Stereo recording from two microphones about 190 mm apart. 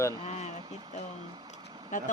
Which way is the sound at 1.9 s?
40° left (ahead or behind).